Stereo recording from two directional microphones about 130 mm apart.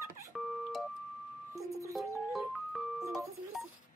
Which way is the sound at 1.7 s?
25° right (ahead or behind).